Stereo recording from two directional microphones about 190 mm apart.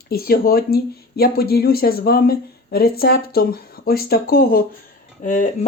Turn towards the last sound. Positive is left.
turn(degrees=40)  # may be behind; listen again after turning